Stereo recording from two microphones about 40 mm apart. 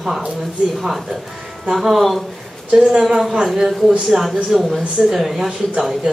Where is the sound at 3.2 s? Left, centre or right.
Centre.